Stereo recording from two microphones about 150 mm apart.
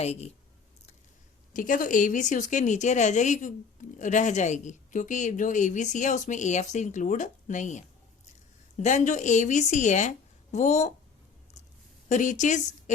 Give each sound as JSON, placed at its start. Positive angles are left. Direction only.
{"t": 0.0, "sound": "a woman's voice", "side_deg": 45}
{"t": 1.5, "sound": "a woman's voice", "side_deg": 60}
{"t": 12.0, "sound": "a woman's voice", "side_deg": 55}